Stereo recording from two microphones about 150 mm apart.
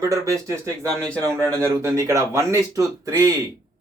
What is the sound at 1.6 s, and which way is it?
Speech, 20° right (ahead or behind).